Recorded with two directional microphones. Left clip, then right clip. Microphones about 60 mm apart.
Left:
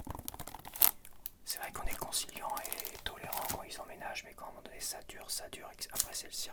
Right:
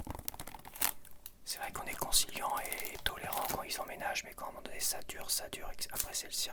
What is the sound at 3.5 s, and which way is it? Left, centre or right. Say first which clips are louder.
Speech: right 5 dB; right.